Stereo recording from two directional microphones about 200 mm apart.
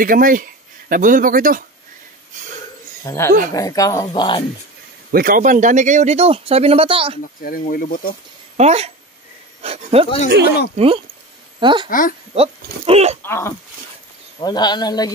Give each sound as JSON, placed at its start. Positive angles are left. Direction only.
{"t": 0.0, "sound": "speech", "side_deg": -45}
{"t": 3.1, "sound": "speech", "side_deg": 15}
{"t": 5.1, "sound": "speech", "side_deg": -45}
{"t": 7.4, "sound": "speech", "side_deg": 45}
{"t": 8.5, "sound": "speech", "side_deg": -35}
{"t": 11.6, "sound": "speech", "side_deg": -25}
{"t": 11.9, "sound": "speech", "side_deg": 45}
{"t": 12.4, "sound": "speech", "side_deg": -30}
{"t": 13.2, "sound": "speech", "side_deg": 10}